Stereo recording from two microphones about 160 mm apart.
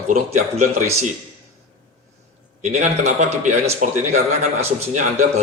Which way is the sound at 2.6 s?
45° right (ahead or behind).